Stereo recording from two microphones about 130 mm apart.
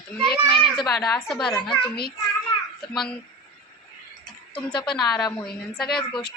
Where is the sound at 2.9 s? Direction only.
Centre (ahead or behind).